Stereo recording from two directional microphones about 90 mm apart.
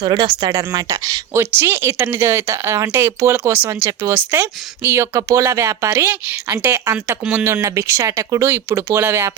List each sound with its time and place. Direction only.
0.0 s speech: 60° right (ahead or behind)
0.5 s speech: 40° right (ahead or behind)
1.3 s speech: 25° right (ahead or behind)
8.4 s speech: 25° right (ahead or behind)